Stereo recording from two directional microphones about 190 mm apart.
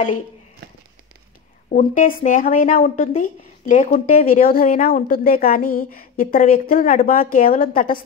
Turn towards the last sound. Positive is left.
turn(degrees=50)  # may be behind; listen again after turning